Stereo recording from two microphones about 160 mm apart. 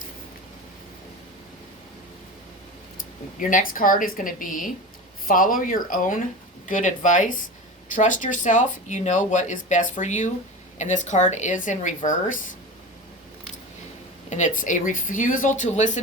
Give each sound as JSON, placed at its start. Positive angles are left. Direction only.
{"t": 3.3, "sound": "speech", "side_deg": 55}
{"t": 14.3, "sound": "speech", "side_deg": 50}